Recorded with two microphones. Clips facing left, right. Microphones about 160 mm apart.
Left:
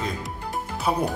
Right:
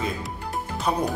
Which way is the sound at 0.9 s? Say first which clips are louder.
Left 1 dB; 5° left (ahead or behind).